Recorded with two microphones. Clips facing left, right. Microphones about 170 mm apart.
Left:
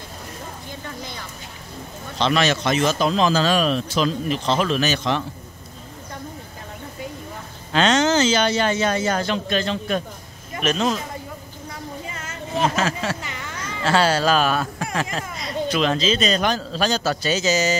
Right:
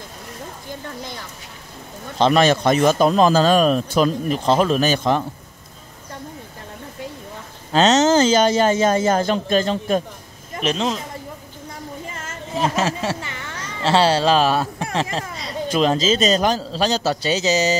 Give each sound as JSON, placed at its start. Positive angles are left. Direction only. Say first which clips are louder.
{"t": 2.1, "sound": "a man's voice", "louder": "right 5 dB", "side_deg": -45}
{"t": 7.7, "sound": "a man's voice", "louder": "right 3 dB", "side_deg": -40}
{"t": 10.6, "sound": "speech", "louder": "even", "side_deg": -25}
{"t": 12.7, "sound": "speech", "louder": "right 2 dB", "side_deg": -25}